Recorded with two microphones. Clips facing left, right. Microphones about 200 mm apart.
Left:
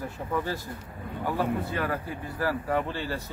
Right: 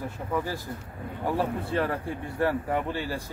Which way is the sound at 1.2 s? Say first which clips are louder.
Even; 30° right (ahead or behind).